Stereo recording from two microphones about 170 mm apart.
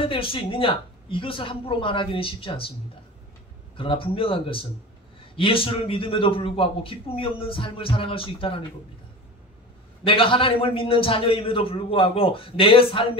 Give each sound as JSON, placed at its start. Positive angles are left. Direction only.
{"t": 0.0, "sound": "a man's voice", "side_deg": 30}
{"t": 3.7, "sound": "a man's voice", "side_deg": 30}
{"t": 10.0, "sound": "a man's voice", "side_deg": 30}